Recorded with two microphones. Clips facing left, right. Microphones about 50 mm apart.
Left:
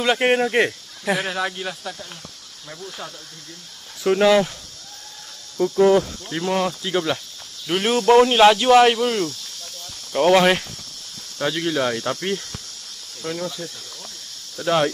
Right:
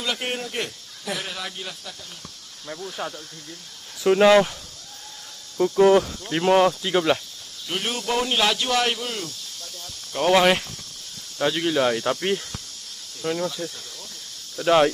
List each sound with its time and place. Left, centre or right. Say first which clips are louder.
0.2 s speech: left 11 dB; left
1.1 s speech: left 8 dB; left
3.0 s speech: right 6 dB; right
4.2 s cricket: right 1 dB; centre
5.6 s cricket: even; centre
6.3 s speech: right 4 dB; right
6.8 s cricket: right 2 dB; centre
7.6 s speech: left 9 dB; left
10.1 s speech: left 3 dB; centre
14.6 s cricket: right 2 dB; centre